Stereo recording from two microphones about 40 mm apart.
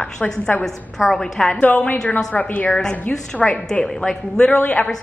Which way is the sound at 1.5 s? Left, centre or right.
Left.